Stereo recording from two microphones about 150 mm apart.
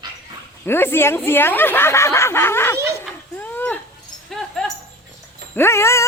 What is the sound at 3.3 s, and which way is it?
Livestock, 15° left (ahead or behind).